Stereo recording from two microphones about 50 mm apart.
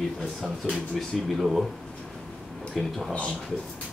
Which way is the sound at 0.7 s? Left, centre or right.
Centre.